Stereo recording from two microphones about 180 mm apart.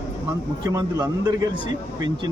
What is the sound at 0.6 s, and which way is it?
A man's voice, 20° right (ahead or behind).